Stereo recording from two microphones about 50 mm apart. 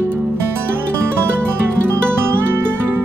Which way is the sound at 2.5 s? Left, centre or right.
Right.